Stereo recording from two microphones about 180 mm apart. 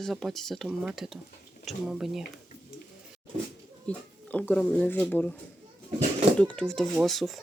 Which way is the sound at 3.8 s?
5° left (ahead or behind).